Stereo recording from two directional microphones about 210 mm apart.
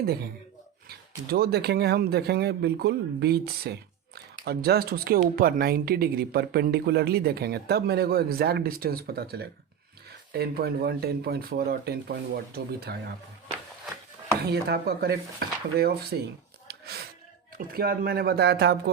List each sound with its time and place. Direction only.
0.0 s speech: 50° right (ahead or behind)
14.4 s speech: 50° right (ahead or behind)
16.6 s a sound: 50° right (ahead or behind)
17.6 s speech: 45° right (ahead or behind)